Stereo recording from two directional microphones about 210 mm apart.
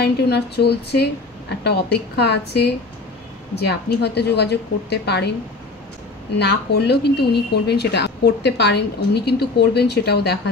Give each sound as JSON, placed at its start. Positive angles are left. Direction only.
{"t": 0.0, "sound": "speech", "side_deg": 50}
{"t": 6.3, "sound": "speech", "side_deg": 55}